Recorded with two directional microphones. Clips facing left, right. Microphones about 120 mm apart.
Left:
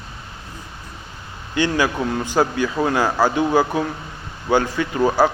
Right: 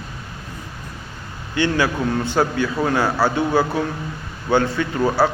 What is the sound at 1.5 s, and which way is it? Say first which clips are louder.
A man's voice: even; 15° left (ahead or behind).